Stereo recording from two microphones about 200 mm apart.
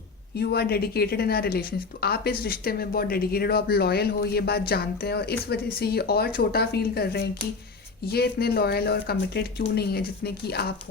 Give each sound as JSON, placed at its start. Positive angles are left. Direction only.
{"t": 0.3, "sound": "speech", "side_deg": 50}